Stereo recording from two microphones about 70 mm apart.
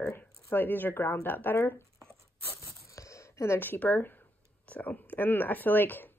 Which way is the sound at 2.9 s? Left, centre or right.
Left.